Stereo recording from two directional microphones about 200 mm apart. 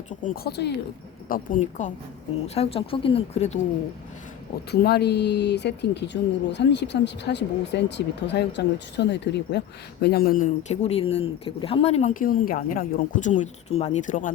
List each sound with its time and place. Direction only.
0.2 s speech: 55° left (ahead or behind)
1.3 s speech: 40° left (ahead or behind)
2.6 s speech: 30° left (ahead or behind)
4.7 s speech: 50° left (ahead or behind)